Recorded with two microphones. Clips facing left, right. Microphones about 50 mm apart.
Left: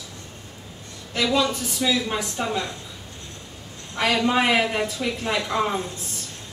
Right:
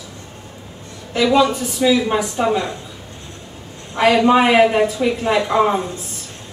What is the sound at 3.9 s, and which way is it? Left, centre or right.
A woman's voice, right.